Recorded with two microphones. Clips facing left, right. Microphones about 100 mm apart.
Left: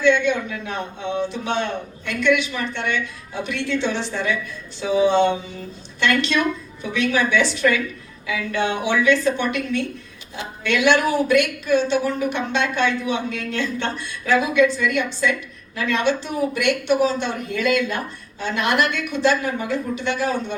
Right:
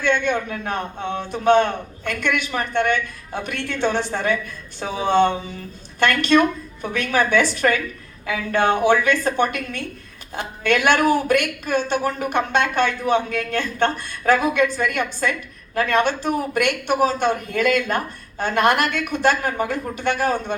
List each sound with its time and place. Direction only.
0.0 s a woman's voice: 50° right (ahead or behind)